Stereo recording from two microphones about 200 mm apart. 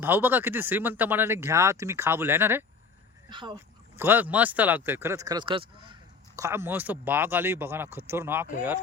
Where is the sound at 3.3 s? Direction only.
20° right (ahead or behind).